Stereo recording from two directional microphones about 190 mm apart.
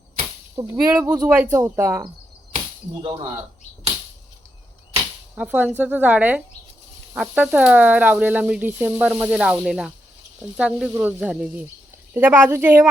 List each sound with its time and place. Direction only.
0.5 s speech: 15° right (ahead or behind)
5.3 s speech: 10° right (ahead or behind)